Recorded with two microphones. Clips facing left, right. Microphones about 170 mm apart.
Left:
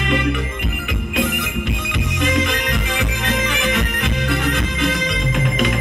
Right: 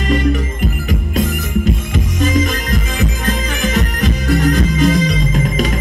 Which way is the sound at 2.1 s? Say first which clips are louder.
Right 3 dB; 40° right (ahead or behind).